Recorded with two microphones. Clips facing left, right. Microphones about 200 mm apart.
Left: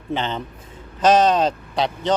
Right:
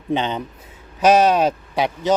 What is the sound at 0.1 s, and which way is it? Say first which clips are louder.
Speech: right 3 dB; 15° right (ahead or behind).